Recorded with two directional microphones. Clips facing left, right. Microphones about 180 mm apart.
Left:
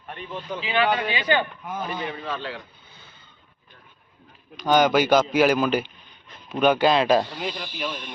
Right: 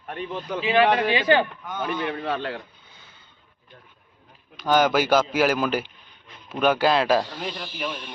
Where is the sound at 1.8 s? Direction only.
60° right (ahead or behind).